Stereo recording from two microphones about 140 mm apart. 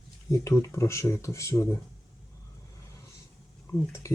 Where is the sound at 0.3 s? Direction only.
20° left (ahead or behind).